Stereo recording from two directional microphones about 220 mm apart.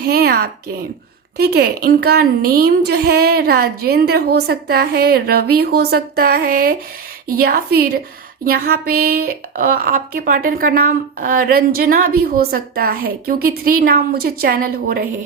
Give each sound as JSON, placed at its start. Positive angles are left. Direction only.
{"t": 0.0, "sound": "a woman's voice", "side_deg": -45}